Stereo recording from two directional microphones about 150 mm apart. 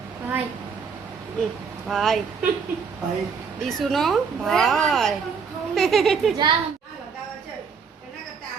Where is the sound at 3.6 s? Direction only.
5° left (ahead or behind).